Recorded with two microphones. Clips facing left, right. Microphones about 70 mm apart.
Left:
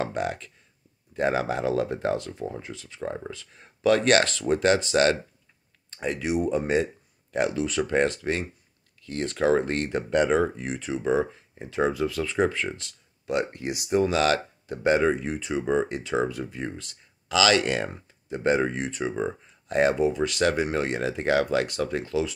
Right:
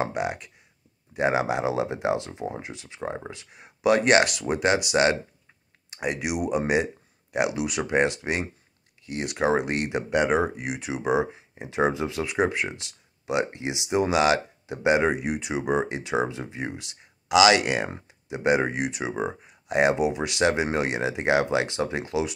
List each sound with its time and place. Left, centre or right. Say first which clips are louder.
0.0 s speech: right 1 dB; centre
5.9 s a sound: right 1 dB; centre
6.7 s speech: even; centre